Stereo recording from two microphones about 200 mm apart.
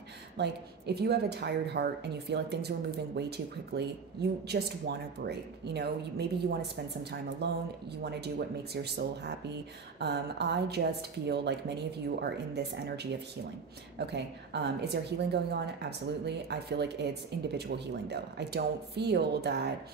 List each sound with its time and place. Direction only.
0.4 s a woman's voice: 55° right (ahead or behind)
7.4 s a woman's voice: 55° right (ahead or behind)